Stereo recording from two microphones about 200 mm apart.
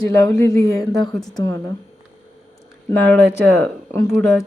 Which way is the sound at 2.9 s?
10° left (ahead or behind).